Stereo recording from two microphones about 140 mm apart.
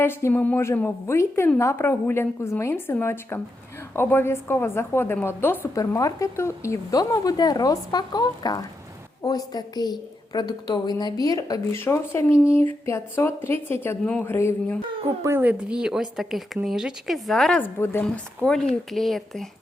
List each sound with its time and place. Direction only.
0.0 s a woman's voice: 15° left (ahead or behind)
15.0 s a woman's voice: 20° right (ahead or behind); by 19.5 s centre (ahead or behind)